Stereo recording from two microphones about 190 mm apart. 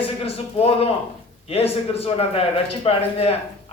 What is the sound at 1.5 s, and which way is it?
Speech, 30° left (ahead or behind).